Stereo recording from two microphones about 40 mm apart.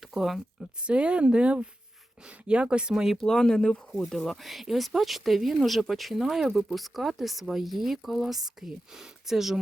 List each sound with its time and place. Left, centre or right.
0.1 s speech: centre
0.9 s speech: right
2.9 s speech: centre
3.2 s speech: centre